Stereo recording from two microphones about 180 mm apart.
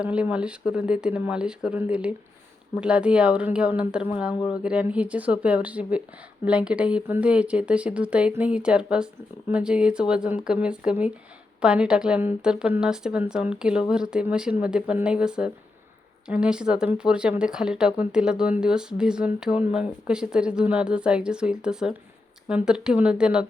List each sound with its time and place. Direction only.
0.0 s a woman's voice: 5° right (ahead or behind)